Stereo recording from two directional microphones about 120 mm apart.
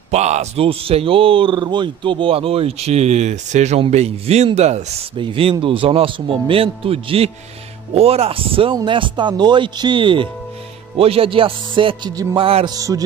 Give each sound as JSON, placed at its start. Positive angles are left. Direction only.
{"t": 0.1, "sound": "a man's voice", "side_deg": -70}
{"t": 5.1, "sound": "speech", "side_deg": -45}
{"t": 12.6, "sound": "speech", "side_deg": -30}